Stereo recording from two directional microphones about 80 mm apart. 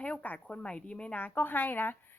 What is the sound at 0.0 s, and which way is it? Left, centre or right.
Speech, centre.